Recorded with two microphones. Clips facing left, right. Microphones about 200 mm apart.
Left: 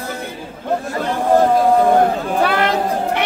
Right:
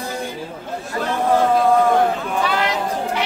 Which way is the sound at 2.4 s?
60° left (ahead or behind).